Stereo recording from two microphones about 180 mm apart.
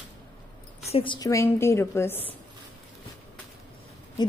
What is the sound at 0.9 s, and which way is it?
A woman's voice, 30° left (ahead or behind).